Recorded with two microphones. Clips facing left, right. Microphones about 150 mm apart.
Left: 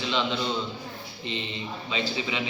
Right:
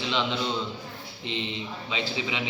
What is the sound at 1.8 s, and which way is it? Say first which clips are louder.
Speech: left 1 dB; 15° right (ahead or behind).